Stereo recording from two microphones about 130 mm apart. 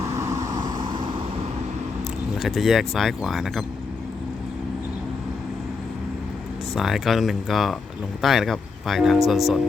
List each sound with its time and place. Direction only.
0.0 s vehicle: 25° right (ahead or behind)
2.4 s speech: centre (ahead or behind)
6.7 s speech: centre (ahead or behind)